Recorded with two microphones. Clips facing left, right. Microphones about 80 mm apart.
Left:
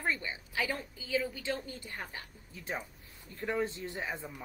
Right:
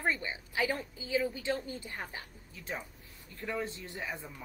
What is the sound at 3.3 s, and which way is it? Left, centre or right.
Speech, left.